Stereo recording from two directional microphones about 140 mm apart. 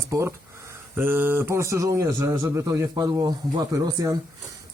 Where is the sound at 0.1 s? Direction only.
20° right (ahead or behind).